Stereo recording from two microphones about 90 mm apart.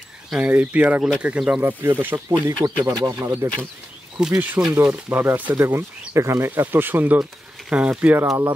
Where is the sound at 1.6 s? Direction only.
25° right (ahead or behind).